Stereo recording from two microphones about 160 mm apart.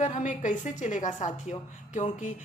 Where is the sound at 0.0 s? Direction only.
50° left (ahead or behind).